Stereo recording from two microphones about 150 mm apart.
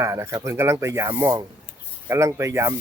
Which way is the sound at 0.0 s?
20° right (ahead or behind).